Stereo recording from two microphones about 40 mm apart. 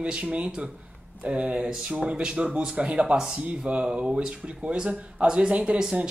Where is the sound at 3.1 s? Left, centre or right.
Centre.